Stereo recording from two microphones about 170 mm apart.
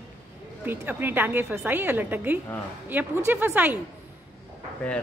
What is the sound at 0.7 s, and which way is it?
A woman's voice, 10° right (ahead or behind).